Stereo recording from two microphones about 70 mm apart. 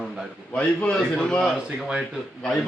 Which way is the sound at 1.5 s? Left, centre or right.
Centre.